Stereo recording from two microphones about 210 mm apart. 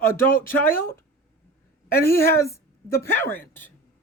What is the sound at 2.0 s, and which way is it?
Speech, 10° left (ahead or behind).